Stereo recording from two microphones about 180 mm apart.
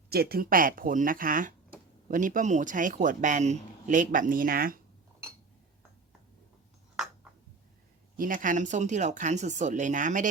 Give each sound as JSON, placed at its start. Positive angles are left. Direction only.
{"t": 0.1, "sound": "speech", "side_deg": -60}
{"t": 8.1, "sound": "speech", "side_deg": -50}